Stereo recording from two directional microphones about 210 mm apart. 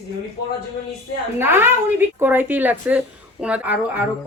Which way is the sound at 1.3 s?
10° right (ahead or behind).